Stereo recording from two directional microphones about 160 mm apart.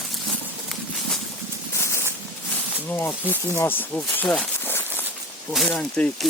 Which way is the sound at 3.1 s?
10° left (ahead or behind).